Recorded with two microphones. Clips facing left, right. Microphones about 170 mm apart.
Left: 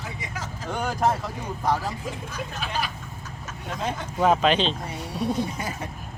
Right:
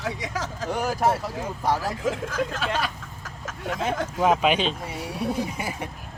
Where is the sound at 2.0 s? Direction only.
90° right.